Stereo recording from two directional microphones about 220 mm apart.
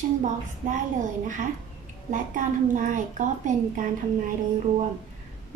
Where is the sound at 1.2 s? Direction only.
35° right (ahead or behind).